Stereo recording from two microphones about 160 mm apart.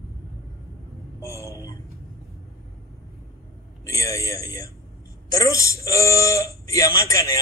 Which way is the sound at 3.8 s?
20° left (ahead or behind).